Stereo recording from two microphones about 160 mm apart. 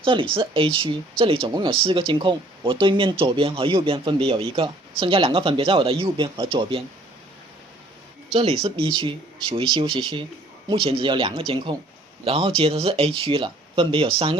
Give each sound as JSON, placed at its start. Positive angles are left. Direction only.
{"t": 0.0, "sound": "speech", "side_deg": -30}
{"t": 8.3, "sound": "speech", "side_deg": -35}